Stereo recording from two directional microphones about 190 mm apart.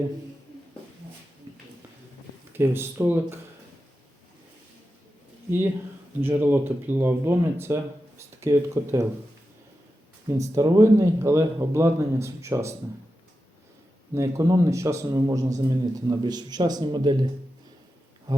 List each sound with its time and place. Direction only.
1.5 s a sound: 25° right (ahead or behind)
2.5 s a man's voice: 10° right (ahead or behind)
6.2 s a man's voice: 10° right (ahead or behind)
10.3 s a man's voice: 15° right (ahead or behind)
14.1 s a man's voice: 15° right (ahead or behind)